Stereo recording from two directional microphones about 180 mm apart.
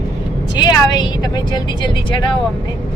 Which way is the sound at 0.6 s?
25° left (ahead or behind).